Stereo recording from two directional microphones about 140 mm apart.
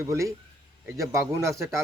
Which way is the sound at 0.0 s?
20° right (ahead or behind).